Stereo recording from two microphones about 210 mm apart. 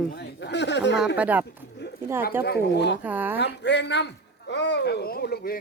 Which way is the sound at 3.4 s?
55° left (ahead or behind).